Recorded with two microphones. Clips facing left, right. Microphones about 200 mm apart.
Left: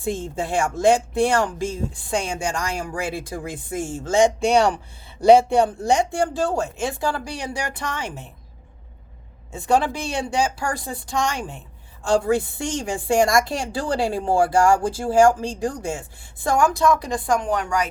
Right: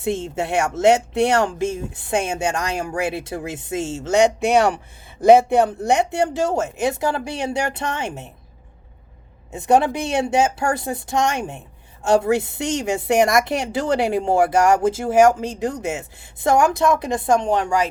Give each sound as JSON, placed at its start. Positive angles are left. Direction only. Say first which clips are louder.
{"t": 0.3, "sound": "speech", "louder": "right 1 dB", "side_deg": -65}
{"t": 0.8, "sound": "a woman's voice", "louder": "right 2 dB", "side_deg": -25}
{"t": 5.2, "sound": "a woman's voice", "louder": "right 1 dB", "side_deg": -20}
{"t": 9.5, "sound": "a woman's voice", "louder": "right 3 dB", "side_deg": -20}